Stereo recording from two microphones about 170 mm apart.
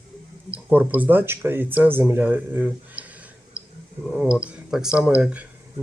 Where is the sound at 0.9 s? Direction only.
10° right (ahead or behind).